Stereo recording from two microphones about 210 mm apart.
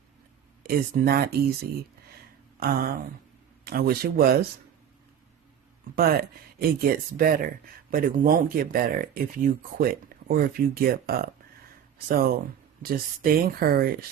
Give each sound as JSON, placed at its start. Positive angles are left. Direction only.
{"t": 0.6, "sound": "speech", "side_deg": -45}
{"t": 2.6, "sound": "speech", "side_deg": -45}
{"t": 6.0, "sound": "speech", "side_deg": -45}